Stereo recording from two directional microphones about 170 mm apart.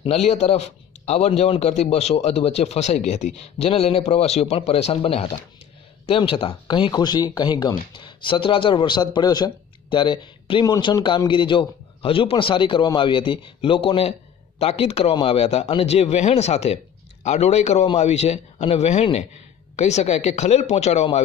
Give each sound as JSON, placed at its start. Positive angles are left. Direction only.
{"t": 0.0, "sound": "a man's voice", "side_deg": 35}